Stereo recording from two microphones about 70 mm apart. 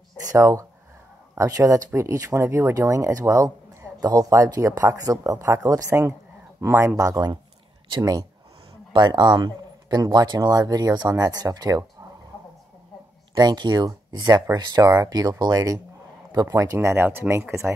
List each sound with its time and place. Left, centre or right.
0.3 s speech: right
2.7 s speech: right
5.3 s speech: right
6.6 s speech: right
7.0 s speech: right
9.0 s speech: right
11.1 s speech: right
11.5 s speech: right
13.4 s speech: right
16.7 s speech: right
17.5 s speech: right